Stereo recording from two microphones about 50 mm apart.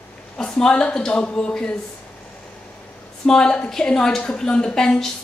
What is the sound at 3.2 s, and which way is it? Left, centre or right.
A woman's voice, centre.